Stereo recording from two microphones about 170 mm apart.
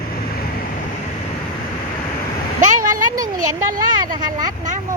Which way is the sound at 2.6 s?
50° right (ahead or behind).